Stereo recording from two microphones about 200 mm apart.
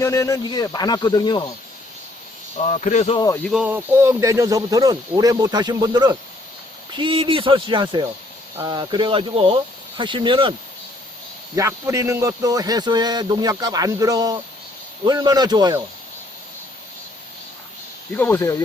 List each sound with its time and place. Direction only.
0.0 s speech: 15° left (ahead or behind)
2.6 s speech: 35° left (ahead or behind)
3.4 s speech: 5° right (ahead or behind); by 10.5 s 25° right (ahead or behind)
11.5 s speech: 15° right (ahead or behind)
18.2 s speech: 10° left (ahead or behind)